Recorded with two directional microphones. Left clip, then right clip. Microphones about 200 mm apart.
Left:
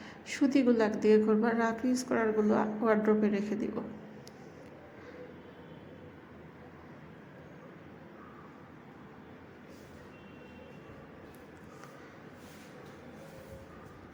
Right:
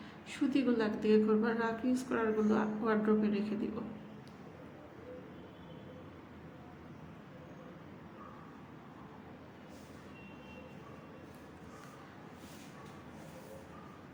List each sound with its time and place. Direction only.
0.3 s a woman's voice: 25° left (ahead or behind)